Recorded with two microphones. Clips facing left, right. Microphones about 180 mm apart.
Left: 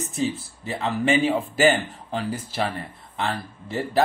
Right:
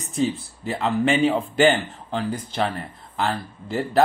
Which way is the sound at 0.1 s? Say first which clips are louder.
Right 5 dB; centre (ahead or behind).